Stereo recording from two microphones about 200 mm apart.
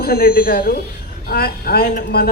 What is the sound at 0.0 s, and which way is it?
Speech, 50° left (ahead or behind).